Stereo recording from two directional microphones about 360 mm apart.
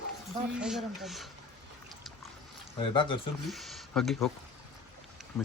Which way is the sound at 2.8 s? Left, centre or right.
Centre.